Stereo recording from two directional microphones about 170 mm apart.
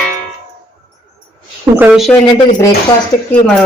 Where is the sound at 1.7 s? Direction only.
5° right (ahead or behind).